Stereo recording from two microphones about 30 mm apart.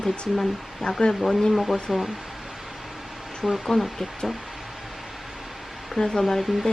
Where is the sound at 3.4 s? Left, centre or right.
Centre.